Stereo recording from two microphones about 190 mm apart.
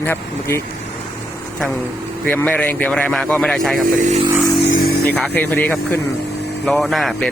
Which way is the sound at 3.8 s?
45° right (ahead or behind).